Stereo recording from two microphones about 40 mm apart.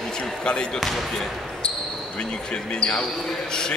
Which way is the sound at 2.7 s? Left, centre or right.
Left.